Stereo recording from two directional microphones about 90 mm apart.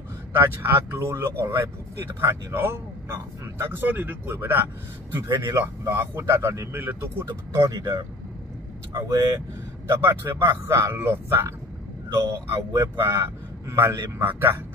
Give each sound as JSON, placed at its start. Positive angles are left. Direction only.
{"t": 0.3, "sound": "speech", "side_deg": -25}
{"t": 8.9, "sound": "speech", "side_deg": -35}
{"t": 9.8, "sound": "speech", "side_deg": -30}